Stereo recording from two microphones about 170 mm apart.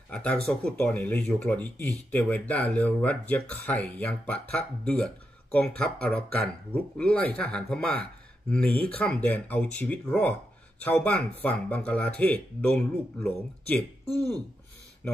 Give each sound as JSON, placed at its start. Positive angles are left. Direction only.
{"t": 0.1, "sound": "speech", "side_deg": 10}
{"t": 15.0, "sound": "speech", "side_deg": 10}